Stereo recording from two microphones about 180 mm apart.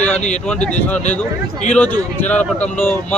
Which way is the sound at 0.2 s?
40° left (ahead or behind).